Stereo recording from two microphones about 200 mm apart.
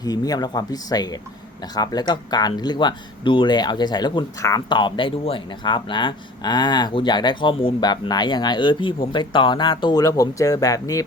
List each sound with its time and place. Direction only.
0.0 s speech: 20° left (ahead or behind)